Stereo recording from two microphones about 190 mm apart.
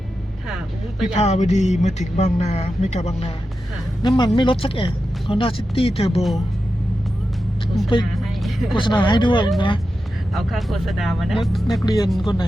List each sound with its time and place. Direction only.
0.4 s vehicle: centre (ahead or behind)
1.1 s speech: 35° left (ahead or behind)
4.4 s speech: 30° left (ahead or behind)
8.2 s music: centre (ahead or behind)
8.7 s speech: 25° left (ahead or behind)
10.3 s speech: centre (ahead or behind)
11.8 s speech: 20° left (ahead or behind)